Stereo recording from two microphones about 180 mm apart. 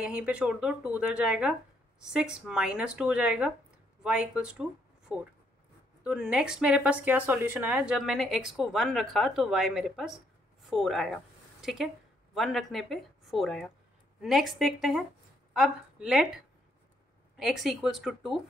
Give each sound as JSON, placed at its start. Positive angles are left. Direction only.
{"t": 0.0, "sound": "a woman's voice", "side_deg": -5}